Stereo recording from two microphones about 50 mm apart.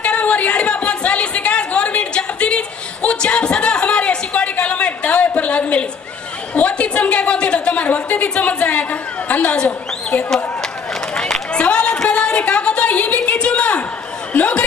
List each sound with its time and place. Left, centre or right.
0.0 s chatter: left
6.5 s a woman's voice: left
11.1 s a sound: centre